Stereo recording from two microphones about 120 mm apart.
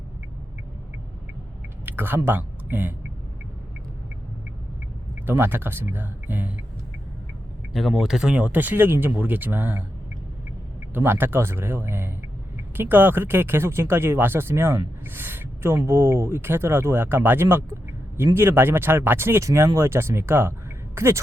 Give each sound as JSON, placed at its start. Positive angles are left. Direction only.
{"t": 1.8, "sound": "speech", "side_deg": -15}
{"t": 5.2, "sound": "speech", "side_deg": -20}
{"t": 7.7, "sound": "speech", "side_deg": 0}
{"t": 10.9, "sound": "speech", "side_deg": -15}